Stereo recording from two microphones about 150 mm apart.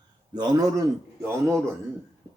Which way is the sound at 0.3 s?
25° right (ahead or behind).